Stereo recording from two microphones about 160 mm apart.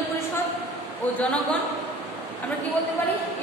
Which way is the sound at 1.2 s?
5° left (ahead or behind).